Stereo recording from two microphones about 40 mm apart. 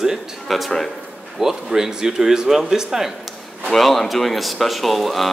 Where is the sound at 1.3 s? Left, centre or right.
Centre.